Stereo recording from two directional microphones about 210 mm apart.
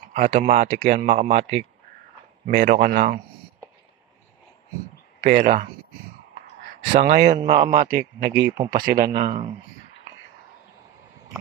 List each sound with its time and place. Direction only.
0.1 s speech: 40° right (ahead or behind)
5.2 s speech: 40° right (ahead or behind)
6.9 s speech: 40° right (ahead or behind)
7.3 s speech: 25° right (ahead or behind)
7.7 s speech: 40° right (ahead or behind)